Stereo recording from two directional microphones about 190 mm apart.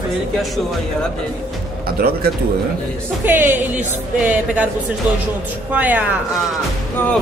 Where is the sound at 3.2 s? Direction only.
10° right (ahead or behind).